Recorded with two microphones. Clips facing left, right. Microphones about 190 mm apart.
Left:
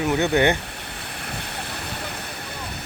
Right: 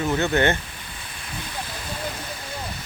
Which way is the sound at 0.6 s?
65° left (ahead or behind).